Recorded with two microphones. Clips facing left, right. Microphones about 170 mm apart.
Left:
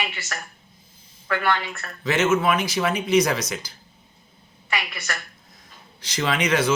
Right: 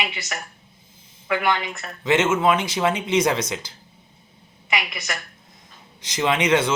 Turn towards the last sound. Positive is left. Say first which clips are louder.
# right 3 dB
turn(degrees=-25)  # may be behind; listen again after turning